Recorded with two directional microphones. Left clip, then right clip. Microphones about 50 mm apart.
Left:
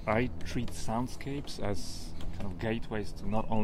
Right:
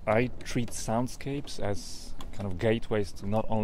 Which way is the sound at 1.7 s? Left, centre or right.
Centre.